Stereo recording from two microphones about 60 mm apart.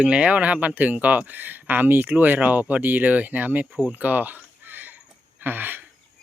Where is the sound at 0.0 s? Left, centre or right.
Centre.